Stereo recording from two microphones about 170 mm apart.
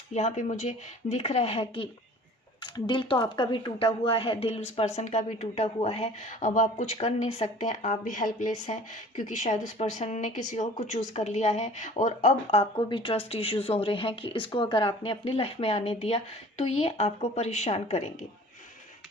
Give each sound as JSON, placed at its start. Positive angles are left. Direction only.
{"t": 0.1, "sound": "a woman's voice", "side_deg": 45}